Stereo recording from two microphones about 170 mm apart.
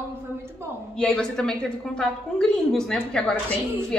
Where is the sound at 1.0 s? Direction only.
5° left (ahead or behind).